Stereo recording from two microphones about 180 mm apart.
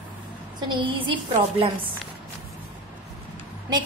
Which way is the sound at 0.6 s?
25° right (ahead or behind).